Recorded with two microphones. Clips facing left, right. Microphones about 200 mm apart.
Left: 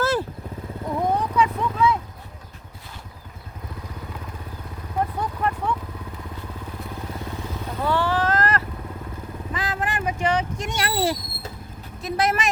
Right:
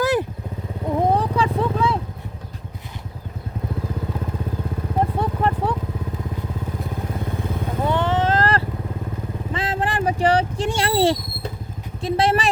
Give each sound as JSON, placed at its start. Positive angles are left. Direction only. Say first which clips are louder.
{"t": 0.0, "sound": "vehicle", "louder": "right 3 dB", "side_deg": -15}
{"t": 0.9, "sound": "vehicle", "louder": "right 4 dB", "side_deg": -30}
{"t": 4.9, "sound": "a sound", "louder": "right 3 dB", "side_deg": -30}
{"t": 7.8, "sound": "vehicle", "louder": "right 2 dB", "side_deg": -20}
{"t": 9.5, "sound": "a sound", "louder": "right 3 dB", "side_deg": -25}
{"t": 12.0, "sound": "vehicle", "louder": "right 4 dB", "side_deg": -30}